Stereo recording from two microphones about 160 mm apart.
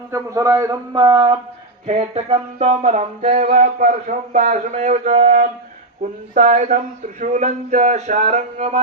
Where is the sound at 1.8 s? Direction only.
40° right (ahead or behind).